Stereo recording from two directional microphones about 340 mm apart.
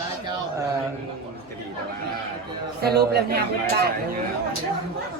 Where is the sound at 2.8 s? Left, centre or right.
Right.